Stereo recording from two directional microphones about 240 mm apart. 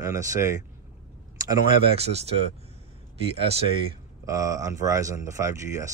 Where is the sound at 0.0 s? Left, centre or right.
Centre.